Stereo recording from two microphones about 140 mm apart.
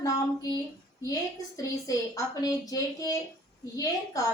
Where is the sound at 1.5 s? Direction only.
25° left (ahead or behind).